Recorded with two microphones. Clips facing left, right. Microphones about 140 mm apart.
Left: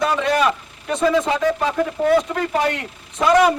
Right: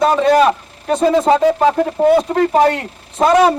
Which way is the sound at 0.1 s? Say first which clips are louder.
Right 7 dB; 35° right (ahead or behind).